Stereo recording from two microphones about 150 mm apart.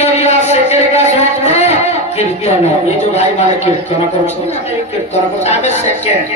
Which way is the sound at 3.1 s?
50° left (ahead or behind).